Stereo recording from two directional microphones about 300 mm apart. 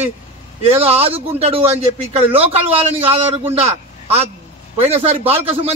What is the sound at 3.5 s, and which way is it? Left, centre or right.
A man's voice, centre.